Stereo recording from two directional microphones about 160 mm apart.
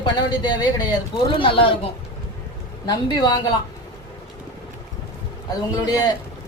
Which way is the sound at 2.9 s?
25° left (ahead or behind).